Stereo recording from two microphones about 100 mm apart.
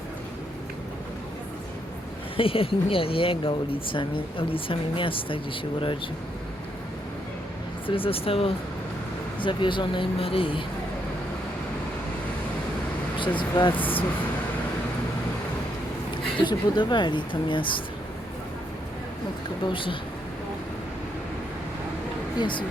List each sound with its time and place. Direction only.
2.3 s speech: 65° left (ahead or behind)
7.9 s speech: 65° left (ahead or behind)
9.4 s speech: 55° left (ahead or behind)
13.1 s speech: 55° left (ahead or behind)
16.5 s speech: 50° left (ahead or behind)
19.6 s speech: 55° left (ahead or behind)
22.4 s speech: 55° left (ahead or behind)